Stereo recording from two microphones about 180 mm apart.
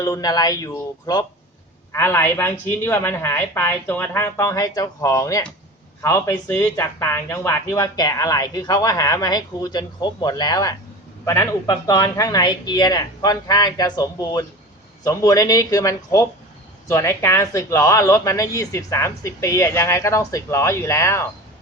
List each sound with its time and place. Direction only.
0.0 s speech: 20° left (ahead or behind)